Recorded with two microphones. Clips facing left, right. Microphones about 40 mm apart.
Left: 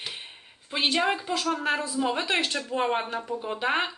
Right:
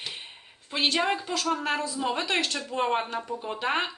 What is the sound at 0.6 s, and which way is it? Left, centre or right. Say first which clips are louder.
A woman's voice: left 1 dB; centre.